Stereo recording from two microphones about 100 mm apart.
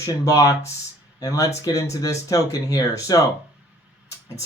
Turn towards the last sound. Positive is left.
turn(degrees=35)  # may be behind; listen again after turning